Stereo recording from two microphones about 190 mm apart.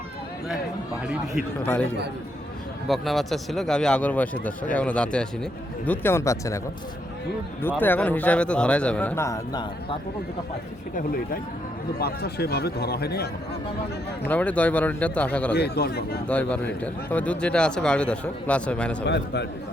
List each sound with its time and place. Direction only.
1.6 s speech: 10° left (ahead or behind)
7.8 s speech: 10° left (ahead or behind)
10.9 s speech: 50° left (ahead or behind)
14.3 s speech: 5° left (ahead or behind)
15.5 s speech: 60° left (ahead or behind)
16.2 s speech: 5° left (ahead or behind)
19.0 s speech: 65° left (ahead or behind)